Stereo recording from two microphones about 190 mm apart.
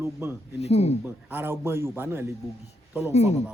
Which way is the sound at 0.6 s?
35° left (ahead or behind).